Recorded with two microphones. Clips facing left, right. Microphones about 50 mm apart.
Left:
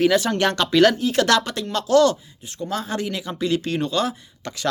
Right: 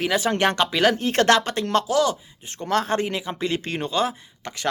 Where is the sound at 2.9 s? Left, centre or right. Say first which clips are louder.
Right 2 dB; right.